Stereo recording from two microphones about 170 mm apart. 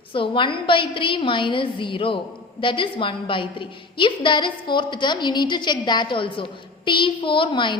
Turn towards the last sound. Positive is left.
turn(degrees=30)  # may be behind; listen again after turning